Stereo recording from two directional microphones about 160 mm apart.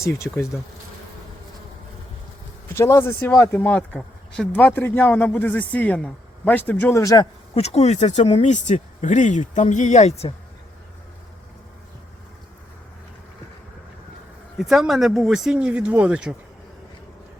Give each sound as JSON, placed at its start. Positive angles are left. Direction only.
{"t": 0.0, "sound": "speech", "side_deg": 15}
{"t": 2.7, "sound": "speech", "side_deg": 15}
{"t": 7.5, "sound": "speech", "side_deg": 40}
{"t": 14.6, "sound": "speech", "side_deg": 0}